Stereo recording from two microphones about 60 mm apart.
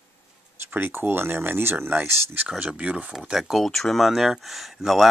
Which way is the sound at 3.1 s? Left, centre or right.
Centre.